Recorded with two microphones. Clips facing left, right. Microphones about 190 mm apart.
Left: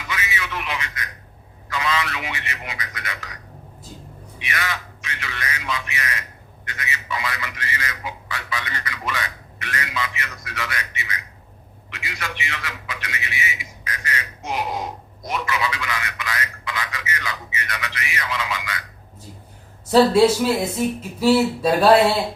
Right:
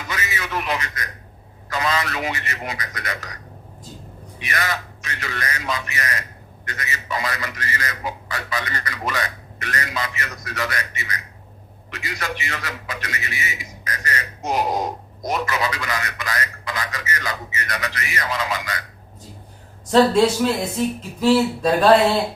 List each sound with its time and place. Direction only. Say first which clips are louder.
0.1 s a sound: right 1 dB; 40° right (ahead or behind)
1.7 s a man's voice: right 1 dB; 40° right (ahead or behind)
4.4 s a man's voice: right 2 dB; 40° right (ahead or behind)
19.9 s speech: left 1 dB; 5° left (ahead or behind)